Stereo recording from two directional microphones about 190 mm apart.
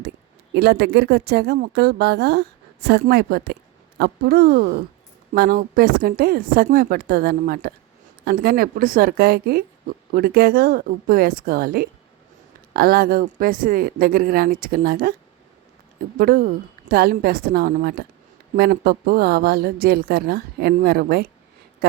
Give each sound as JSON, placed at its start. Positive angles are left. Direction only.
{"t": 0.5, "sound": "a woman's voice", "side_deg": -60}
{"t": 16.1, "sound": "a woman's voice", "side_deg": -50}